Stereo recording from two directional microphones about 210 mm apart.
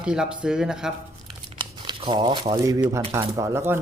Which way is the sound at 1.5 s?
25° right (ahead or behind).